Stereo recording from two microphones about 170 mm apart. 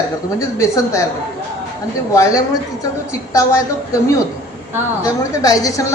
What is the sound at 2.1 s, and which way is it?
A man's voice, 20° left (ahead or behind).